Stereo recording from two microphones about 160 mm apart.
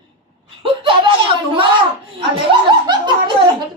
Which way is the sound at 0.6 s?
35° right (ahead or behind).